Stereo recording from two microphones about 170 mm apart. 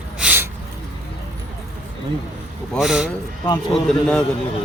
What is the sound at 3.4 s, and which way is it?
Speech, 25° left (ahead or behind).